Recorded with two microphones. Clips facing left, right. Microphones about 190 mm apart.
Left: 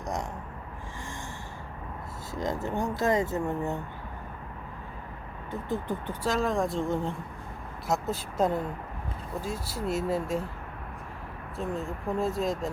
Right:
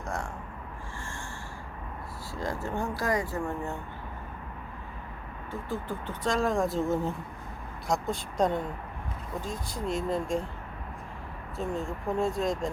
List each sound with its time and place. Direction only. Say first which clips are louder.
2.3 s speech: left 2 dB; 20° left (ahead or behind)
5.5 s speech: left 3 dB; 20° left (ahead or behind)
6.2 s speech: right 1 dB; centre (ahead or behind)
11.5 s speech: even; centre (ahead or behind)